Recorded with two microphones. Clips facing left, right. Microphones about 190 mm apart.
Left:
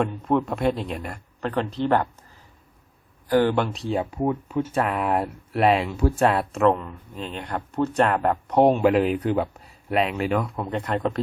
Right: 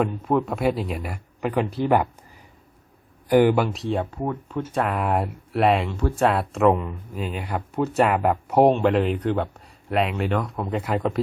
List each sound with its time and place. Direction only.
0.0 s speech: centre (ahead or behind)
3.2 s speech: 10° right (ahead or behind)